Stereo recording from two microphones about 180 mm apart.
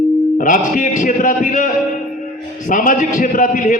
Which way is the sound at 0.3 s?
45° left (ahead or behind).